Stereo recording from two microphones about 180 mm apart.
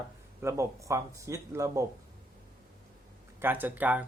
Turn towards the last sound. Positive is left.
turn(degrees=-10)  # may be behind; listen again after turning